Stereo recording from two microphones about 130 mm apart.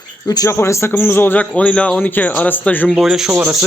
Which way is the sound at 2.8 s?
Centre (ahead or behind).